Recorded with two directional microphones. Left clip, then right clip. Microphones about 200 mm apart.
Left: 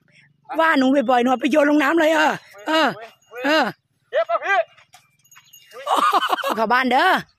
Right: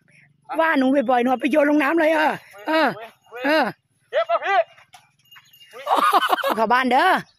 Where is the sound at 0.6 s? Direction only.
20° left (ahead or behind).